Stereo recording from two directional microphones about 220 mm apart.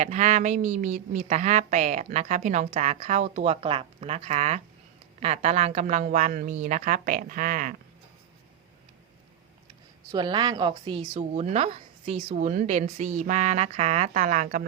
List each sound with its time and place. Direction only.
0.0 s a woman's voice: 30° right (ahead or behind)
10.1 s a woman's voice: 20° right (ahead or behind)
11.1 s a woman's voice: 35° right (ahead or behind)